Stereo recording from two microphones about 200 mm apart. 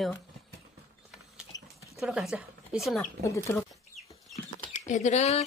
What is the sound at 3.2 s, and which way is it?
Speech, 15° left (ahead or behind).